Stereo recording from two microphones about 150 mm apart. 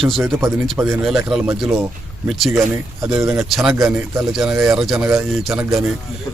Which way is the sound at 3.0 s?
20° right (ahead or behind).